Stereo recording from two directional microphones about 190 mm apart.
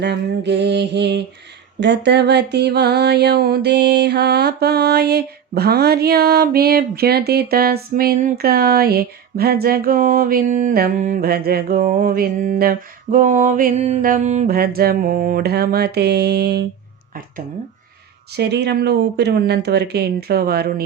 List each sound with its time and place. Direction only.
0.0 s speech: 65° right (ahead or behind)
1.8 s mantra: 65° right (ahead or behind); by 14.5 s 40° right (ahead or behind)
14.5 s mantra: 55° right (ahead or behind)
18.3 s speech: 60° right (ahead or behind)